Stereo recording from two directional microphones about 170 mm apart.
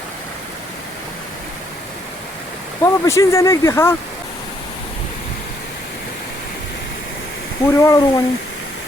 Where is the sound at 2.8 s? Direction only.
15° left (ahead or behind).